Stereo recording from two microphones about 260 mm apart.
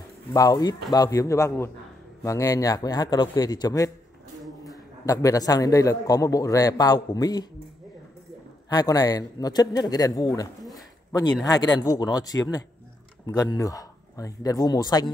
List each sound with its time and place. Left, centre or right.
0.3 s a man's voice: centre
8.6 s a man's voice: centre
10.6 s a sound: centre
11.4 s a man's voice: centre